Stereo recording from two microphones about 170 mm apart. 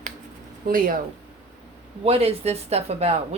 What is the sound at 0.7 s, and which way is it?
Speech, 55° right (ahead or behind).